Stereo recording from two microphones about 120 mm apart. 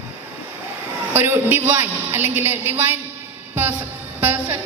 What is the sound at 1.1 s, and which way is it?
A woman's voice, 20° right (ahead or behind).